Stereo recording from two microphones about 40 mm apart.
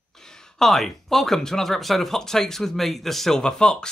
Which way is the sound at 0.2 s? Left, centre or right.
Centre.